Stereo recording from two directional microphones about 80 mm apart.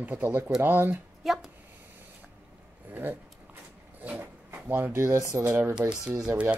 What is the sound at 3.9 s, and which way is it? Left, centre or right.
Speech, right.